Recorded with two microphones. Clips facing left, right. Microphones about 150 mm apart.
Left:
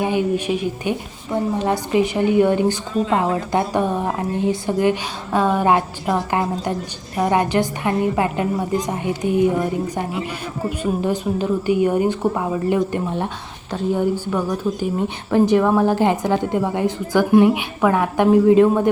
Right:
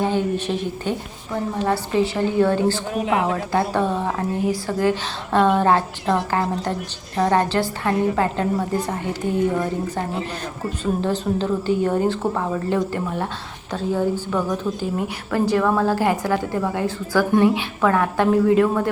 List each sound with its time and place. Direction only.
0.0 s a woman's voice: 15° left (ahead or behind)
11.0 s a woman's voice: 15° left (ahead or behind)